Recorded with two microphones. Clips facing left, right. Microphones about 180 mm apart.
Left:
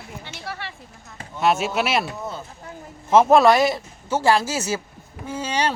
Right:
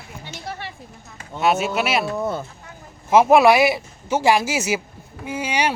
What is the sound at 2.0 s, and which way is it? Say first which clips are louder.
Speech: right 7 dB; 50° right (ahead or behind).